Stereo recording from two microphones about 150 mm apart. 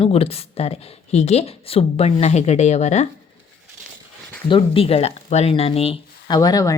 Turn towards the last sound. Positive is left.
turn(degrees=25)  # may be behind; listen again after turning